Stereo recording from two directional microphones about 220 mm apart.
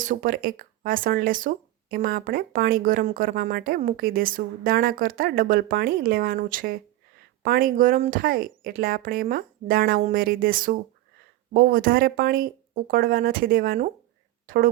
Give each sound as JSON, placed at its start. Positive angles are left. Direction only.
{"t": 0.0, "sound": "speech", "side_deg": -40}